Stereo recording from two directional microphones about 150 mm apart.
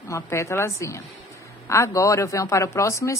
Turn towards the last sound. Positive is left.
turn(degrees=20)  # may be behind; listen again after turning